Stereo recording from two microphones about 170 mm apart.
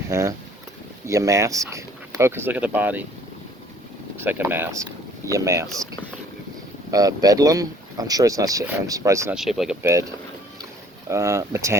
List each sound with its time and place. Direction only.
0.1 s speech: 15° right (ahead or behind)
4.2 s speech: 10° right (ahead or behind)
6.9 s speech: 20° right (ahead or behind)
9.3 s speech: centre (ahead or behind)
9.8 s speech: 20° right (ahead or behind)
11.1 s speech: 15° right (ahead or behind)